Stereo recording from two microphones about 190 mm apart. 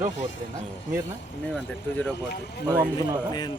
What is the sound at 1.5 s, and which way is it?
Speech, 5° left (ahead or behind).